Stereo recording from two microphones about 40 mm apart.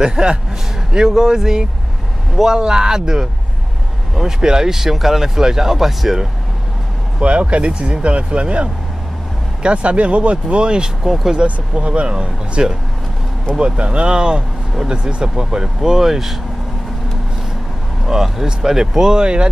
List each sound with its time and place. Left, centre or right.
0.0 s speech: right
4.4 s speech: centre
7.2 s speech: right; by 16.3 s centre
18.0 s speech: centre